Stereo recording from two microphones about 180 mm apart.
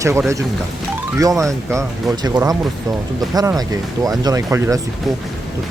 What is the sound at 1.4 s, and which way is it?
Speech, 15° right (ahead or behind).